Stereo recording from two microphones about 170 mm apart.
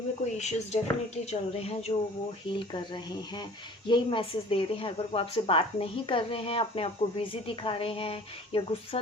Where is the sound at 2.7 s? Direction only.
25° left (ahead or behind).